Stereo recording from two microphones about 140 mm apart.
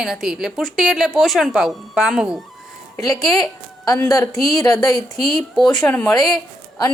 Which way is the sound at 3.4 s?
25° left (ahead or behind).